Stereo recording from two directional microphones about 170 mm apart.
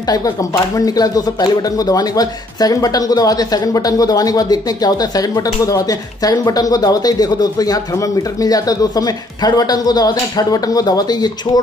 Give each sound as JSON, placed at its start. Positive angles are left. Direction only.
{"t": 0.0, "sound": "speech", "side_deg": 20}